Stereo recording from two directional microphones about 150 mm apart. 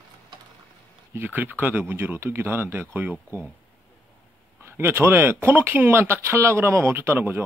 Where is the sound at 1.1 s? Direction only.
10° right (ahead or behind).